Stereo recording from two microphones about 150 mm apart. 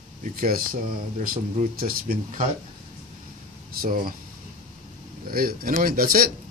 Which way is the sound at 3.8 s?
75° right (ahead or behind).